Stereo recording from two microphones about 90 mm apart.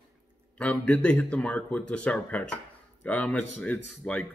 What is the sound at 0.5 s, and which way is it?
Speech, 15° left (ahead or behind).